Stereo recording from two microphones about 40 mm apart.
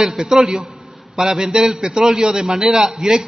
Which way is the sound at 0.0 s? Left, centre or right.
Centre.